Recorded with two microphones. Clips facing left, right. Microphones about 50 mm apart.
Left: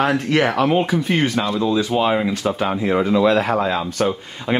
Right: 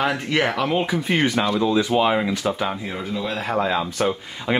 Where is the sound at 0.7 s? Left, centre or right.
Centre.